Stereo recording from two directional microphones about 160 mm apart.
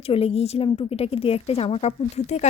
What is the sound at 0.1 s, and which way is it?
A woman's voice, 40° left (ahead or behind).